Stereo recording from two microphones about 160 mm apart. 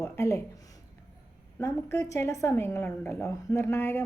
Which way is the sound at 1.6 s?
20° left (ahead or behind).